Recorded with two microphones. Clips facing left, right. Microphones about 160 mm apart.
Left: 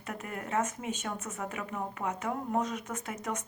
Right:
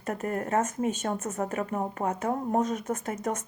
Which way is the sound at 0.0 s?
45° right (ahead or behind).